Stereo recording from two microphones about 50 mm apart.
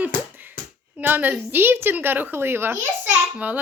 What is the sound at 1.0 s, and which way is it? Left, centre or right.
A child's voice, right.